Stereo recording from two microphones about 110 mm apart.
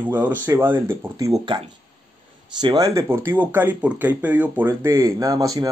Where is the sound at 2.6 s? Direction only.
40° right (ahead or behind); by 4.7 s 15° right (ahead or behind).